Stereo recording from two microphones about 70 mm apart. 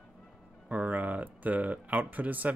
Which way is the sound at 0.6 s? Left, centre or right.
Right.